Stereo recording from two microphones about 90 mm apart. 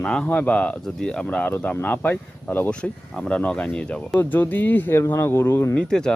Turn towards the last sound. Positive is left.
turn(degrees=10)  # may be behind; listen again after turning